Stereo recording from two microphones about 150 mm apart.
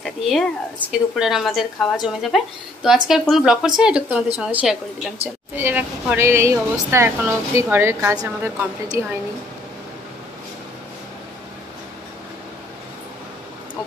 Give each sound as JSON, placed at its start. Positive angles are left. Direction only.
{"t": 0.0, "sound": "a woman's voice", "side_deg": 0}